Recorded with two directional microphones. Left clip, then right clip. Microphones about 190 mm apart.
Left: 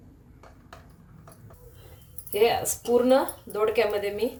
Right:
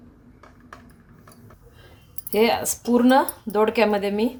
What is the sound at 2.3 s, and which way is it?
Speech, 50° right (ahead or behind).